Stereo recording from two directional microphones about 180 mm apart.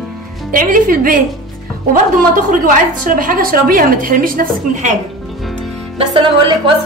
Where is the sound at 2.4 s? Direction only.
45° right (ahead or behind).